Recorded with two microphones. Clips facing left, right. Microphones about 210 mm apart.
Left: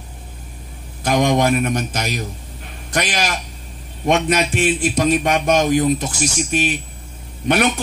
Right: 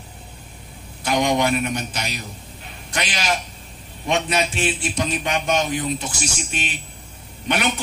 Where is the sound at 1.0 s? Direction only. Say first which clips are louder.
Left 4 dB; 45° left (ahead or behind).